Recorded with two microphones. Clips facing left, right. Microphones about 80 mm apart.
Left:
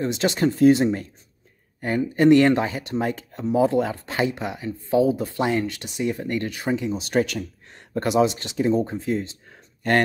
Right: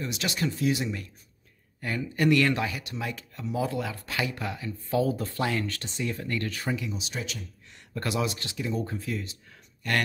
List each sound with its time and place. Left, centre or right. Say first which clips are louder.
0.0 s speech: left 9 dB; left
7.0 s speech: left 14 dB; left
8.0 s speech: left 10 dB; left